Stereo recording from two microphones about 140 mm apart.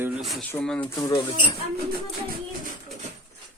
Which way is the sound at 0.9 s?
30° left (ahead or behind).